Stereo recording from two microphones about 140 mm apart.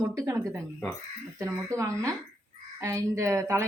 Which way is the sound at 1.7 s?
20° right (ahead or behind).